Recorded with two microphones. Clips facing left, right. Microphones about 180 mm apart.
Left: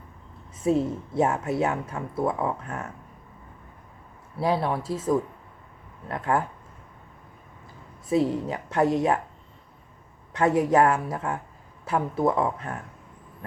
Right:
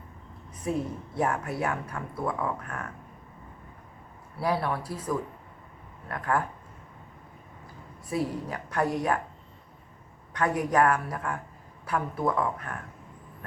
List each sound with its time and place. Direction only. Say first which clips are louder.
0.6 s a woman's voice: left 7 dB; 25° left (ahead or behind)
4.4 s a woman's voice: left 3 dB; 25° left (ahead or behind)
8.1 s a woman's voice: left 7 dB; 25° left (ahead or behind)
10.3 s a woman's voice: left 5 dB; 25° left (ahead or behind)